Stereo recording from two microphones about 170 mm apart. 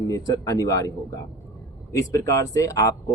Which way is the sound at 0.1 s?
20° left (ahead or behind).